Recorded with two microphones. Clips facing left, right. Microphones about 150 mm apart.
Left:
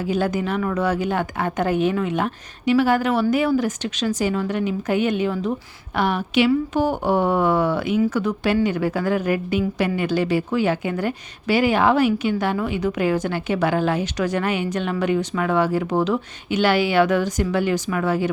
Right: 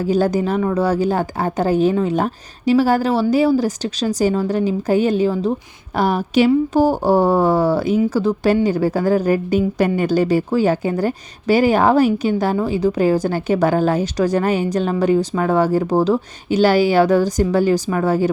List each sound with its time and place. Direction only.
0.0 s a woman's voice: 40° right (ahead or behind)